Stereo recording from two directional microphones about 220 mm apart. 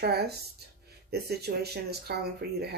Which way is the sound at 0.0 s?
45° right (ahead or behind).